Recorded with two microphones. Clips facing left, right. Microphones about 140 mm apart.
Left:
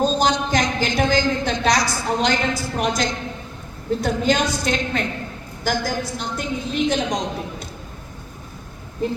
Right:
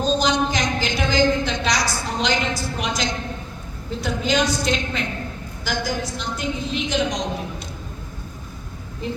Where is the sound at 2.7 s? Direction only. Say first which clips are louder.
Left 3 dB; 55° left (ahead or behind).